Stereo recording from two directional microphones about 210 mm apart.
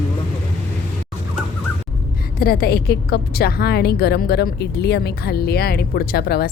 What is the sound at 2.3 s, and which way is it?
A woman's voice, 45° left (ahead or behind).